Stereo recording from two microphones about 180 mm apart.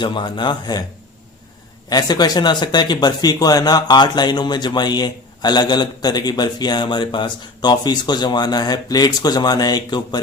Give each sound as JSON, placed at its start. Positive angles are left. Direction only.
{"t": 0.0, "sound": "speech", "side_deg": 25}
{"t": 1.9, "sound": "speech", "side_deg": 20}